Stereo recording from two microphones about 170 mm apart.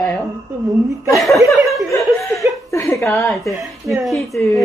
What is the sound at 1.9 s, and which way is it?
Laughter, 20° left (ahead or behind).